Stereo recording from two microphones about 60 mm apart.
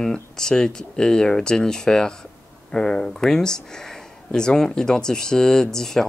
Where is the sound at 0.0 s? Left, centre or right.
Centre.